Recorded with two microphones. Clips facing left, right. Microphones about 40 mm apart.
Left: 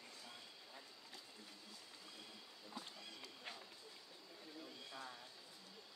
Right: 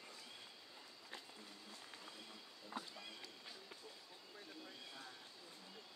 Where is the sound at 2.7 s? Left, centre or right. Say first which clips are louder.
Right 4 dB; right.